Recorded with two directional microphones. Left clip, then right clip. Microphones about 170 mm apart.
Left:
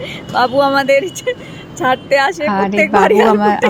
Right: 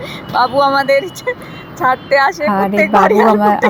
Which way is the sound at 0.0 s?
30° left (ahead or behind).